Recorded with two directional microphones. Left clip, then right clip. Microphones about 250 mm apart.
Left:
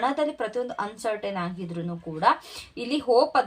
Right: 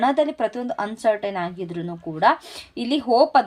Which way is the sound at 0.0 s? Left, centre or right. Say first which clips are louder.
Right 6 dB; right.